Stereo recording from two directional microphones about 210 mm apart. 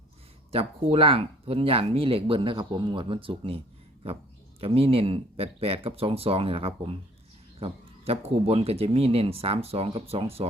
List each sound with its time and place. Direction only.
0.5 s speech: 25° right (ahead or behind)
4.6 s speech: 25° right (ahead or behind)